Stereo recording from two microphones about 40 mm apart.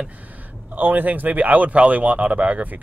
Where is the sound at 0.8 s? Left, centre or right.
Right.